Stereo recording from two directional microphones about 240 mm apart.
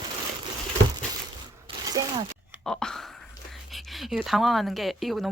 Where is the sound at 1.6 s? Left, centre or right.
Centre.